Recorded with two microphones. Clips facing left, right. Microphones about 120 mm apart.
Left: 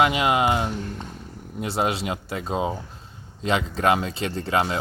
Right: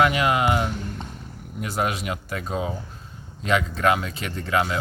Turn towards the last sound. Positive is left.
turn(degrees=30)  # may be behind; listen again after turning